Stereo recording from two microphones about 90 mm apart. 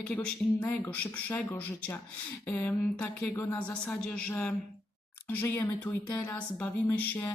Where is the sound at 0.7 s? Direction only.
20° left (ahead or behind).